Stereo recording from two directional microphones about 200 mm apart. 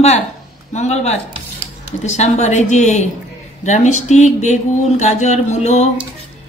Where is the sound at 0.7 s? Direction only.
35° left (ahead or behind).